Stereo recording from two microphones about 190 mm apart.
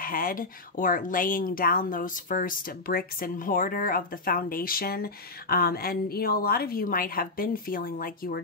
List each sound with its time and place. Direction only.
0.0 s speech: 50° left (ahead or behind)